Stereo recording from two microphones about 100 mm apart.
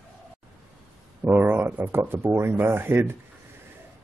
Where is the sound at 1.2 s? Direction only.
20° right (ahead or behind).